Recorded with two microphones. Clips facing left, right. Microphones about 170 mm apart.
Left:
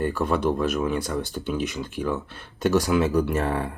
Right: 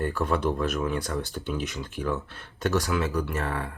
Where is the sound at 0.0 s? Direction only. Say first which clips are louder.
Left 3 dB; 5° left (ahead or behind).